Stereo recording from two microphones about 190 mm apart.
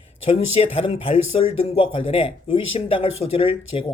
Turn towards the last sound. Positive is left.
turn(degrees=30)  # may be behind; listen again after turning